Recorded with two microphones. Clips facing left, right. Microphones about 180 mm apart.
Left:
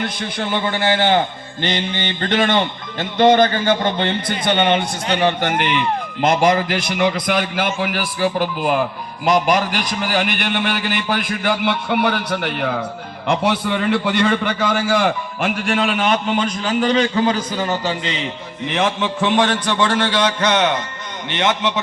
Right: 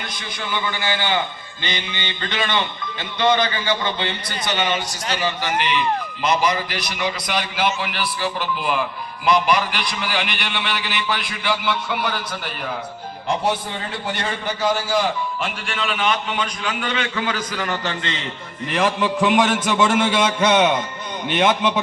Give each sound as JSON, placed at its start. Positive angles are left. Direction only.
{"t": 0.0, "sound": "a man's voice", "side_deg": 55}
{"t": 18.6, "sound": "a man's voice", "side_deg": 0}